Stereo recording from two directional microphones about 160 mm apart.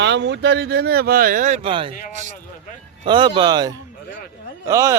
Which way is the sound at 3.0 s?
30° right (ahead or behind).